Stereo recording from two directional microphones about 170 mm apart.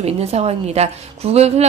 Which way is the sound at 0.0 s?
40° right (ahead or behind).